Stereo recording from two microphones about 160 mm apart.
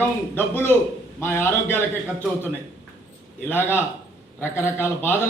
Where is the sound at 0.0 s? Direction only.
15° left (ahead or behind).